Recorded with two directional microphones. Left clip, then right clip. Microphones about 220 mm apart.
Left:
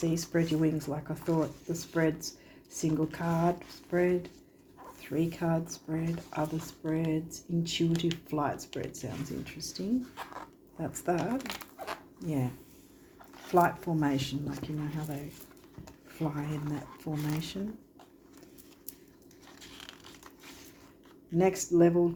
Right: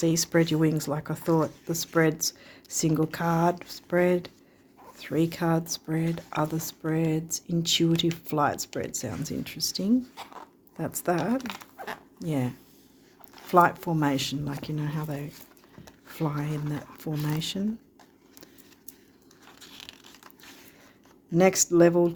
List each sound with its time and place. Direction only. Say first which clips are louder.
0.0 s speech: right 7 dB; 45° right (ahead or behind)
13.5 s speech: right 5 dB; 40° right (ahead or behind)
21.3 s speech: right 5 dB; 45° right (ahead or behind)